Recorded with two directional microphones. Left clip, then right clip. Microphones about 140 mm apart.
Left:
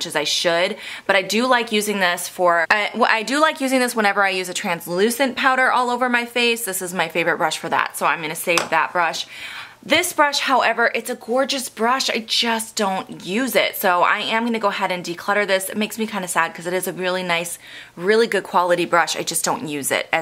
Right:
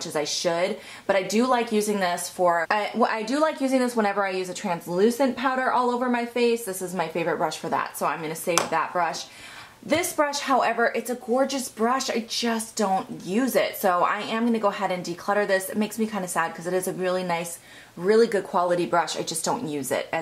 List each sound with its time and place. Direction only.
0.0 s a woman's voice: 25° left (ahead or behind)
10.3 s a woman's voice: 25° left (ahead or behind)